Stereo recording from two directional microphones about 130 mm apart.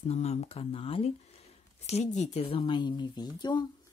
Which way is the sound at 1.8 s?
60° left (ahead or behind).